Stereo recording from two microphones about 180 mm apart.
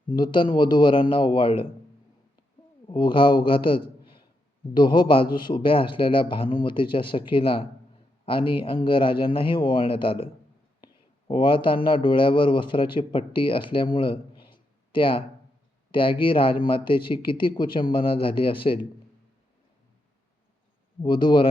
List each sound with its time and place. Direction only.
0.2 s a man's voice: 25° left (ahead or behind)
2.8 s a man's voice: 25° left (ahead or behind)
11.3 s a man's voice: 30° left (ahead or behind)
21.0 s a man's voice: 25° left (ahead or behind)